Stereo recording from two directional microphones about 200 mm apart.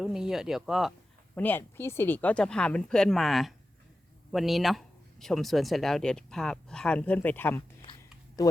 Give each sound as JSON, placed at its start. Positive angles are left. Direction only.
{"t": 0.0, "sound": "speech", "side_deg": 0}
{"t": 1.4, "sound": "speech", "side_deg": 10}